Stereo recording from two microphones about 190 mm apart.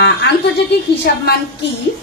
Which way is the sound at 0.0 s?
60° left (ahead or behind).